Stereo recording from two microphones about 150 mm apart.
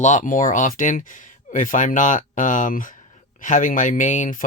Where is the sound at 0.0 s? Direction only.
50° left (ahead or behind).